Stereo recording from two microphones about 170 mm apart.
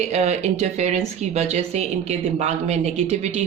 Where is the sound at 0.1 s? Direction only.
40° right (ahead or behind).